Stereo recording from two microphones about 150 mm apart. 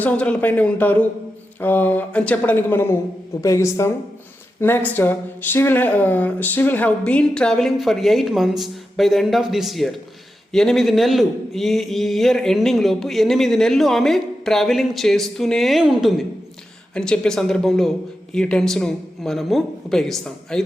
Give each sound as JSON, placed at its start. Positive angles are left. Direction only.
{"t": 0.0, "sound": "a man's voice", "side_deg": 10}